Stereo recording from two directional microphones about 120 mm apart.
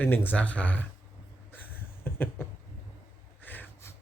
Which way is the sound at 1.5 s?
15° left (ahead or behind).